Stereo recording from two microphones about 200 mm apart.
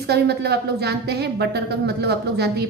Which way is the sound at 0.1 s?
55° right (ahead or behind).